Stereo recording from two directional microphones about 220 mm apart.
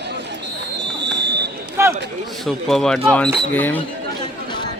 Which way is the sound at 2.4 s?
Centre (ahead or behind).